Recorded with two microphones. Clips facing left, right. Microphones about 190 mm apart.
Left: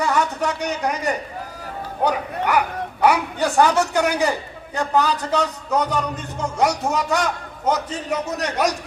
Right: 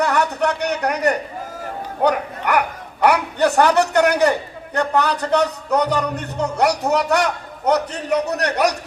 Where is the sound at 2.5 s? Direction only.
65° right (ahead or behind).